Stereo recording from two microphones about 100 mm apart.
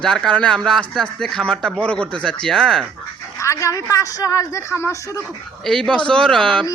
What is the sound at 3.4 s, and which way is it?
A woman's voice, 30° left (ahead or behind).